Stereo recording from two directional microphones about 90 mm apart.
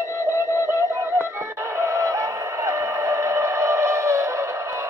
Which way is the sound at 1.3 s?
30° right (ahead or behind).